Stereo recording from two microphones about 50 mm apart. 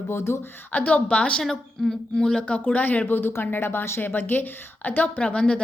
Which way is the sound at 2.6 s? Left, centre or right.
Left.